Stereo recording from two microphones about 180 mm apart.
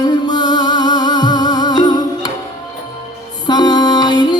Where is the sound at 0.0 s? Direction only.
25° left (ahead or behind).